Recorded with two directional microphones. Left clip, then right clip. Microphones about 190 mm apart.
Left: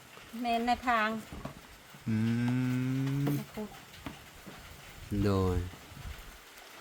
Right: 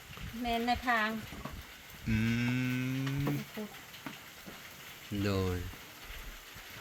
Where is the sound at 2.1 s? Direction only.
15° left (ahead or behind).